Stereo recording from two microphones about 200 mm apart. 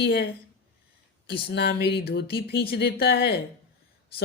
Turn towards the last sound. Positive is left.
turn(degrees=50)  # may be behind; listen again after turning